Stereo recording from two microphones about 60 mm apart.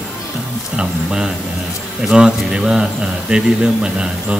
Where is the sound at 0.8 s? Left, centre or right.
Centre.